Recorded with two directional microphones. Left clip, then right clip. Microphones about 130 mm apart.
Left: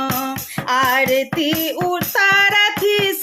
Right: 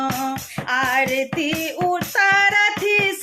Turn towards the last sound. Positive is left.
turn(degrees=35)  # may be behind; listen again after turning